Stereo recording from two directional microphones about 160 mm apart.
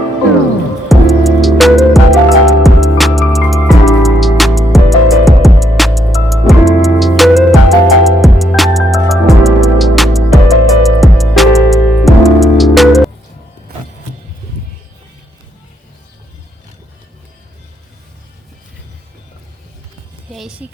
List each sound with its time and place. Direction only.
0.9 s music: centre (ahead or behind)
13.7 s music: 75° right (ahead or behind)
20.3 s music: centre (ahead or behind)